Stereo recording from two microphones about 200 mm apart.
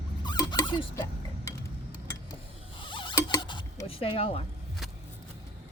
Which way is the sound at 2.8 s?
25° left (ahead or behind).